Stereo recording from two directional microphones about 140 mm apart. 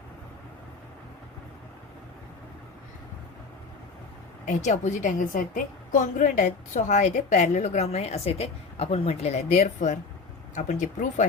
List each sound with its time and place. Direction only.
4.4 s a woman's voice: 60° left (ahead or behind)